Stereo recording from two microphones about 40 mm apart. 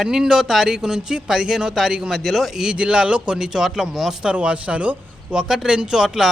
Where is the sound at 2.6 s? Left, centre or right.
Right.